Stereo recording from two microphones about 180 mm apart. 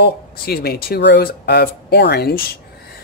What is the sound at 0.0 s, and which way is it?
Speech, 60° left (ahead or behind).